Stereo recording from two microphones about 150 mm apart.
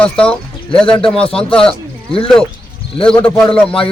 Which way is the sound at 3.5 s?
5° left (ahead or behind).